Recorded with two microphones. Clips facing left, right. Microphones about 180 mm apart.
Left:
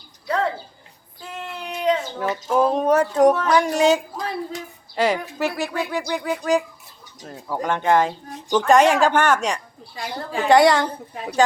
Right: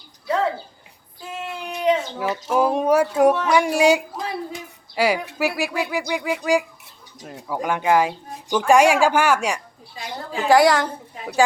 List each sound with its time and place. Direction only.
1.4 s a sound: 5° right (ahead or behind)
4.5 s speech: 10° right (ahead or behind)
9.9 s a woman's voice: 55° left (ahead or behind)
10.5 s a woman's voice: 5° right (ahead or behind)